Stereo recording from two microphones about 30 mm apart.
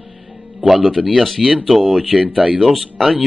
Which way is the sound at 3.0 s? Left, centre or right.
Centre.